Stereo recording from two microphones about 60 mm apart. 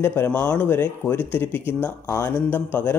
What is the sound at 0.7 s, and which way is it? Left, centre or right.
A man's voice, left.